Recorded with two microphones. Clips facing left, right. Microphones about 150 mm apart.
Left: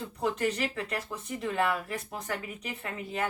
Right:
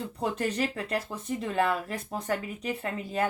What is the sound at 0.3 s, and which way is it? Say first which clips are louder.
Speech: right 1 dB; 35° right (ahead or behind).